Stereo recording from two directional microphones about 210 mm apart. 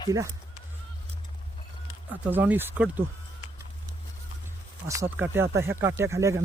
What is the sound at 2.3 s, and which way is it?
Speech, 10° right (ahead or behind).